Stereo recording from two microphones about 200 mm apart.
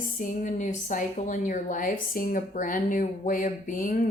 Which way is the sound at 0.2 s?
40° left (ahead or behind).